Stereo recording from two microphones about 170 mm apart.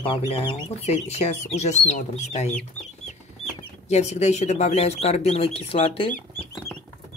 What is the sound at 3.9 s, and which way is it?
Speech, 40° left (ahead or behind).